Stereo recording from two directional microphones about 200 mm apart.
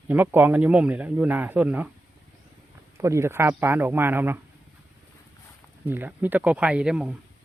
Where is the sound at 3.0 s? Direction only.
15° right (ahead or behind).